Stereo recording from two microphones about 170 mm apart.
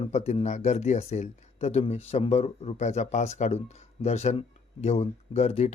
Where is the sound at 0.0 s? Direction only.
40° left (ahead or behind).